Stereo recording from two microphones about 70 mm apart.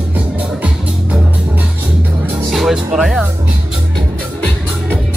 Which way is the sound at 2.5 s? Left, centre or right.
Centre.